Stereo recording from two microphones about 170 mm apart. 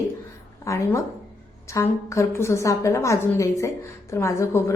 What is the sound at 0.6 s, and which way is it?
A woman's voice, 20° left (ahead or behind).